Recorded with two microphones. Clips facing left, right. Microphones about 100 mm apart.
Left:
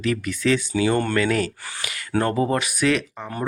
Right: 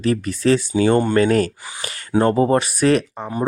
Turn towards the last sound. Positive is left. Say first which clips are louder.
# right 5 dB
turn(degrees=-20)  # may be behind; listen again after turning